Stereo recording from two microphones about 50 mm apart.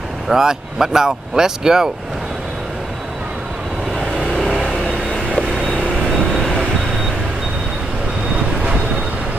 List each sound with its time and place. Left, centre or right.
0.3 s speech: centre
4.4 s vehicle: centre